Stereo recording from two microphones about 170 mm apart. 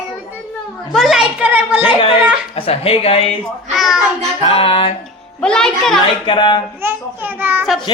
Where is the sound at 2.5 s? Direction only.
35° left (ahead or behind).